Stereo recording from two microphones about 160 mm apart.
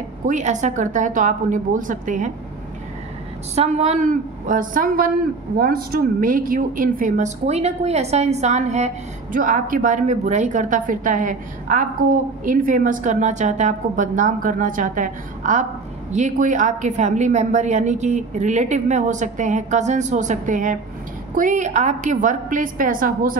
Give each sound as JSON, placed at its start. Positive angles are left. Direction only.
{"t": 0.3, "sound": "a woman's voice", "side_deg": -50}
{"t": 3.5, "sound": "a woman's voice", "side_deg": -40}